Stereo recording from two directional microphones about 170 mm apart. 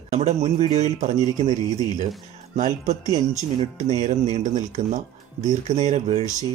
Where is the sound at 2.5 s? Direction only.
45° right (ahead or behind).